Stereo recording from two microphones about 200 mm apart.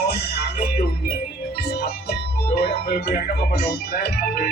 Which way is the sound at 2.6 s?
55° left (ahead or behind).